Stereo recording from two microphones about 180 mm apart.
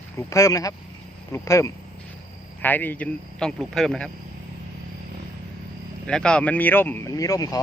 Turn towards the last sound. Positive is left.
turn(degrees=20)  # may be behind; listen again after turning